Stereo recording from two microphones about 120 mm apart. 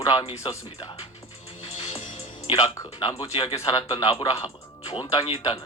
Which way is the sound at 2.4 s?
55° left (ahead or behind).